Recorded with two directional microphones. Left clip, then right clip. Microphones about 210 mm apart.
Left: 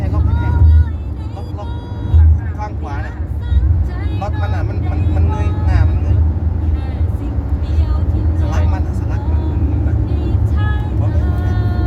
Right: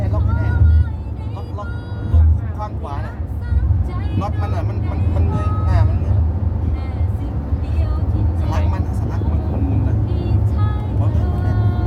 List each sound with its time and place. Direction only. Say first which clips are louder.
4.2 s vehicle: left 1 dB; 50° right (ahead or behind)
8.4 s vehicle: left 1 dB; 40° right (ahead or behind)